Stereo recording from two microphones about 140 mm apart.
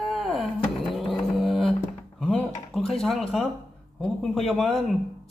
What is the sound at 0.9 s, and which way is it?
Music, centre (ahead or behind).